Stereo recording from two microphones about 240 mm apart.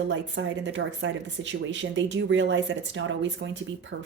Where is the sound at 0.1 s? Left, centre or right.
Right.